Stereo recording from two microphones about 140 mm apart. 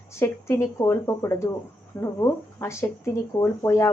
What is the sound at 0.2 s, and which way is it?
Speech, 20° left (ahead or behind).